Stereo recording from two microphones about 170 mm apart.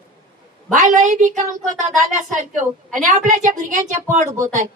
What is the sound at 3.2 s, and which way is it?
A woman's voice, 45° right (ahead or behind).